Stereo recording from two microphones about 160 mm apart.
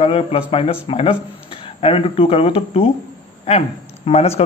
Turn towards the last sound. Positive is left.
turn(degrees=40)  # may be behind; listen again after turning